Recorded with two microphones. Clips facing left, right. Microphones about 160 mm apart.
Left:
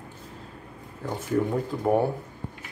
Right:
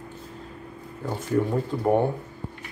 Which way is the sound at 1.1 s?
5° right (ahead or behind).